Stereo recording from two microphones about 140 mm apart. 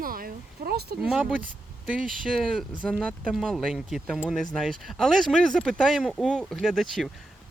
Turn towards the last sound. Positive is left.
turn(degrees=0)  # may be behind; listen again after turning